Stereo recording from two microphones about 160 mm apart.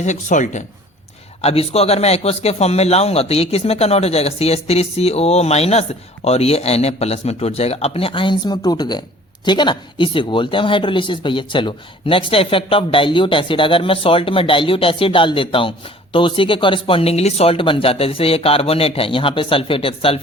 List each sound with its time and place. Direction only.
0.0 s a man's voice: 50° left (ahead or behind)